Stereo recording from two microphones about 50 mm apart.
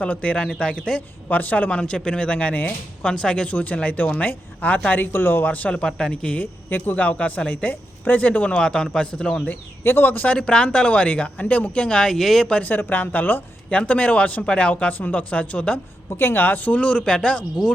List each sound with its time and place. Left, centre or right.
0.0 s speech: left
1.3 s speech: left
3.0 s speech: centre
3.5 s speech: left
5.1 s speech: left
5.5 s speech: left
5.7 s speech: centre
6.4 s speech: left; by 9.4 s centre
9.5 s speech: left
10.2 s speech: centre
12.1 s speech: centre
12.6 s speech: left
13.7 s speech: left
16.0 s speech: left; by 17.7 s centre